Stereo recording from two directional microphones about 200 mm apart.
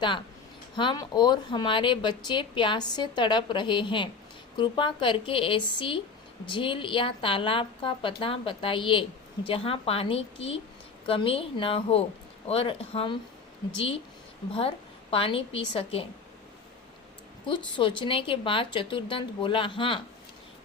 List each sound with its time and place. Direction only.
0.8 s a woman's voice: 20° left (ahead or behind)
15.1 s a woman's voice: 25° left (ahead or behind)
17.4 s a woman's voice: 25° left (ahead or behind)